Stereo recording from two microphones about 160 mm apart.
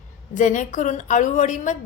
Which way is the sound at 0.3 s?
50° left (ahead or behind).